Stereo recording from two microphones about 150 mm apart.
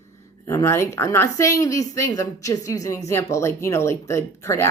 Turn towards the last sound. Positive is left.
turn(degrees=20)  # may be behind; listen again after turning